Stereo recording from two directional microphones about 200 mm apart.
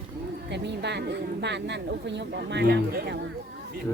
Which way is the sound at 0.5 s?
55° right (ahead or behind).